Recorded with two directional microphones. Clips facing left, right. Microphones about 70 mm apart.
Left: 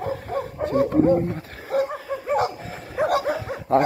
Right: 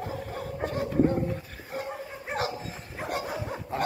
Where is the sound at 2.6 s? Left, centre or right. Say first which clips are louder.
Left 12 dB; left.